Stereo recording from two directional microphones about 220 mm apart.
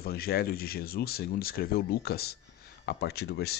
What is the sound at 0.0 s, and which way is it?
Speech, 45° left (ahead or behind).